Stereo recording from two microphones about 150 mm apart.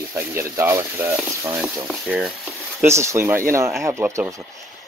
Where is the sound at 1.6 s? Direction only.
5° right (ahead or behind).